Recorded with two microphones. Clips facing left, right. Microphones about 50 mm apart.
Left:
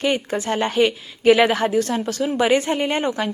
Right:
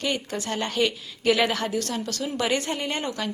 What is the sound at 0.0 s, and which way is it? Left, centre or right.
A woman's voice, left.